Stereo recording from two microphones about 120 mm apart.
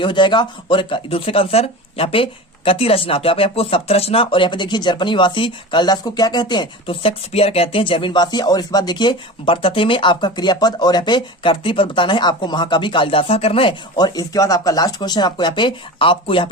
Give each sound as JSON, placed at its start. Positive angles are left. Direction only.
{"t": 0.0, "sound": "speech", "side_deg": 40}